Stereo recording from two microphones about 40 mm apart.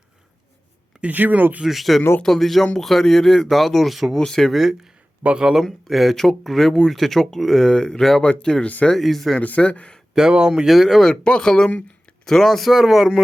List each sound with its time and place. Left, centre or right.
1.1 s speech: right
1.6 s speech: centre
4.1 s speech: centre
4.5 s speech: centre
5.2 s speech: right
5.6 s speech: centre
7.6 s speech: centre
9.0 s speech: centre
9.6 s speech: left
10.2 s speech: centre
10.7 s speech: centre
11.1 s speech: left
11.4 s speech: centre